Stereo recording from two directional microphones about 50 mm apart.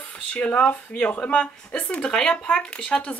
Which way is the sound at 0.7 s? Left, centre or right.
Left.